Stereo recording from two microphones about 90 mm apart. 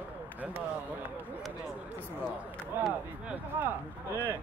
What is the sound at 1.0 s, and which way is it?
Speech, 20° right (ahead or behind).